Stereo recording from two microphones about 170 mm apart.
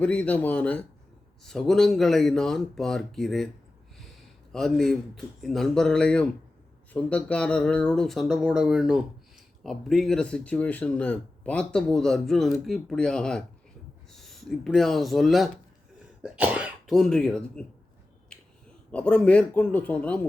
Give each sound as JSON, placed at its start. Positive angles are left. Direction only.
{"t": 0.0, "sound": "a man's voice", "side_deg": 10}
{"t": 4.5, "sound": "speech", "side_deg": 0}
{"t": 18.9, "sound": "a man's voice", "side_deg": 5}